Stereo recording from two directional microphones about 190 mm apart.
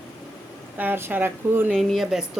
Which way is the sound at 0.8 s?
10° right (ahead or behind).